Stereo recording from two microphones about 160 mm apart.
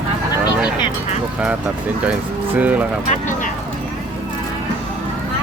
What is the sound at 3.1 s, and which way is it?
Vehicle, 50° left (ahead or behind).